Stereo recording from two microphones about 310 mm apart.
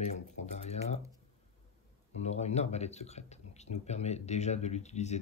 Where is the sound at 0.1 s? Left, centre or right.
Left.